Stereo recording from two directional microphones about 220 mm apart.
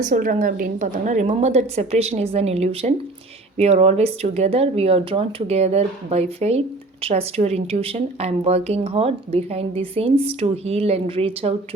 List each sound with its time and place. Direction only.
0.0 s a woman's voice: 40° right (ahead or behind)